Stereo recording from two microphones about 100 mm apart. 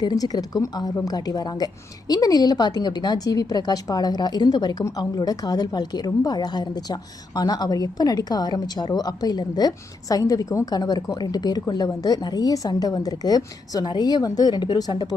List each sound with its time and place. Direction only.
0.0 s a woman's voice: 40° left (ahead or behind)